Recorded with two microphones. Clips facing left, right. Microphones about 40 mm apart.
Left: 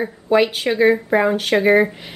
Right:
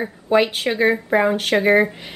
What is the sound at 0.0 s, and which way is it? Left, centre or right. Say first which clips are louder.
Speech: left 1 dB; centre.